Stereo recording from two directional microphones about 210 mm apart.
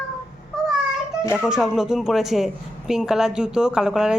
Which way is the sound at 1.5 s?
5° right (ahead or behind).